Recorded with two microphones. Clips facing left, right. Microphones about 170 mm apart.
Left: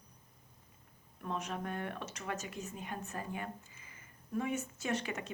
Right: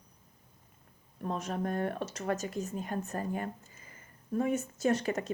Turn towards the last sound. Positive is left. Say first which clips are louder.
# right 8 dB
turn(degrees=-40)  # may be behind; listen again after turning